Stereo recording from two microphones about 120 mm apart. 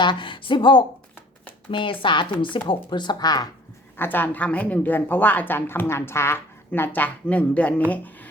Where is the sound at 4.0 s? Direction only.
15° left (ahead or behind).